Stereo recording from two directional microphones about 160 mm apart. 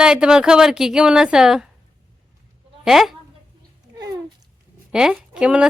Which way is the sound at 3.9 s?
25° right (ahead or behind).